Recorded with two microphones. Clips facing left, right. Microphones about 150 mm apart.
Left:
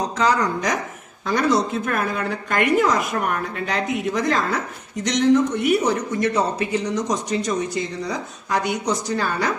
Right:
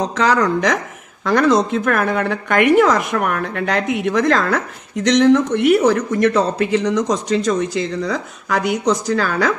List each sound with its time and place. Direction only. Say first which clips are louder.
0.2 s speech: right 4 dB; 80° right